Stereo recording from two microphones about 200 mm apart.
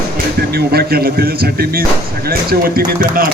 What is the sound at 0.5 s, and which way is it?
Music, 50° right (ahead or behind).